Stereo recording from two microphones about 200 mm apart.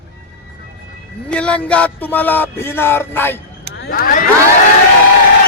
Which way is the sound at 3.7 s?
50° left (ahead or behind).